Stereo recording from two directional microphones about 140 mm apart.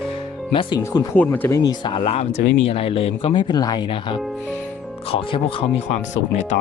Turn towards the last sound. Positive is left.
turn(degrees=55)  # may be behind; listen again after turning